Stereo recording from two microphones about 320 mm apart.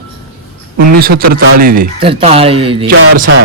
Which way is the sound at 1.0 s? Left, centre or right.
Right.